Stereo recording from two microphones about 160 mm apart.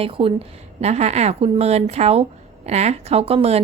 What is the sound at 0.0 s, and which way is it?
A woman's voice, 35° right (ahead or behind).